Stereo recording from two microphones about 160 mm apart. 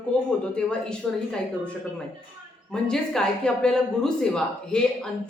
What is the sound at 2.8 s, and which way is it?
A woman's voice, 5° left (ahead or behind).